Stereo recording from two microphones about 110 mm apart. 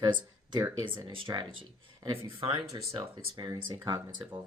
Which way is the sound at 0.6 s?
20° right (ahead or behind).